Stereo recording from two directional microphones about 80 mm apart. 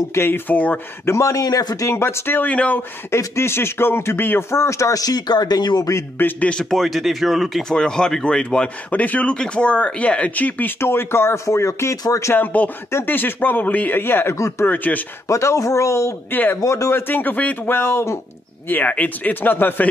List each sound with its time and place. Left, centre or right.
0.1 s speech: left
1.1 s speech: left
1.9 s speech: left; by 2.8 s centre
3.1 s speech: left
6.1 s speech: left
6.5 s speech: centre
10.8 s speech: left
12.4 s speech: left
14.3 s speech: left
14.7 s speech: left
15.2 s speech: left
17.1 s speech: left
18.7 s speech: left